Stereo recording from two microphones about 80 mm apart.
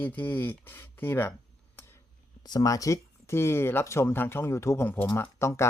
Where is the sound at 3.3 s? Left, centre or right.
Left.